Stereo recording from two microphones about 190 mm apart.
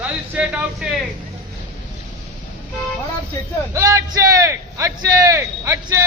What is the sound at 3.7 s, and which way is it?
A man's voice, 15° right (ahead or behind).